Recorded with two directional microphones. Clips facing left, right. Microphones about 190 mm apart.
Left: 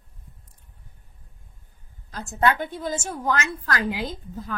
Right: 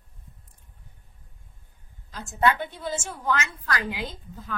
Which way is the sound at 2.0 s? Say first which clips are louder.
Left 1 dB; 40° left (ahead or behind).